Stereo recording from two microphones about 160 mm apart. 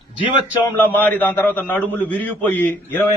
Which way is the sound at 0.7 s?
10° left (ahead or behind).